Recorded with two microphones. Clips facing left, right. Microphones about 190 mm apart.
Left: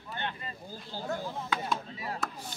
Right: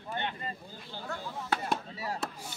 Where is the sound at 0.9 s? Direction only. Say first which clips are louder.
Left 5 dB; 40° left (ahead or behind).